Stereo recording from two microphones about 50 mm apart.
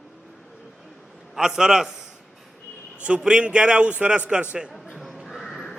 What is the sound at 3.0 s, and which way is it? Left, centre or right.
A man's voice, right.